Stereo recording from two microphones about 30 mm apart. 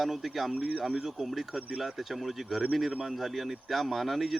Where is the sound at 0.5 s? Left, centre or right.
Right.